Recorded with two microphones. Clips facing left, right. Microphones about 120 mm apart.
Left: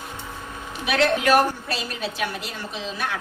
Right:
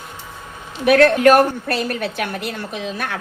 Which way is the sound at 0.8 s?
55° right (ahead or behind).